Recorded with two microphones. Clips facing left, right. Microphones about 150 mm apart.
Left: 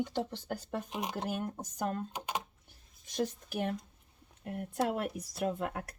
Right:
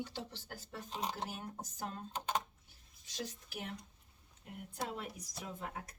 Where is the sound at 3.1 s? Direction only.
55° left (ahead or behind).